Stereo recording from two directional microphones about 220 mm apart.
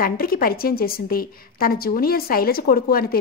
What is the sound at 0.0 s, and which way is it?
A woman's voice, 40° left (ahead or behind).